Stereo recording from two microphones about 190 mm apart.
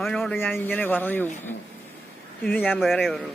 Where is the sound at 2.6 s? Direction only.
Centre (ahead or behind).